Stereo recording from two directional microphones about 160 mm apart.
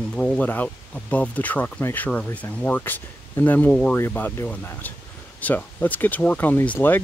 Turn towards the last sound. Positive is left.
turn(degrees=10)  # may be behind; listen again after turning